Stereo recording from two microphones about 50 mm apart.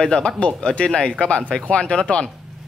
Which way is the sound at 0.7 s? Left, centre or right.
Left.